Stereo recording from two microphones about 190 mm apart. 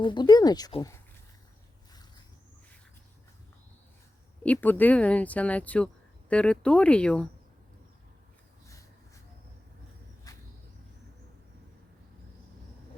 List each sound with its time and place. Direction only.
0.0 s speech: 25° left (ahead or behind)
4.4 s speech: 10° left (ahead or behind)
10.3 s a sound: 20° left (ahead or behind)